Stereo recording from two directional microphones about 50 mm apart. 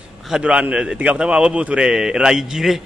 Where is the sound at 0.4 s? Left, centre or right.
Centre.